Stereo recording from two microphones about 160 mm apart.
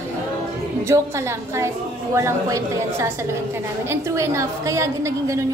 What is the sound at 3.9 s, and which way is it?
A woman's voice, 15° right (ahead or behind).